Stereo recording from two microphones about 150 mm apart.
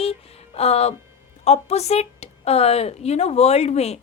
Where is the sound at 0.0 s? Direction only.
40° left (ahead or behind).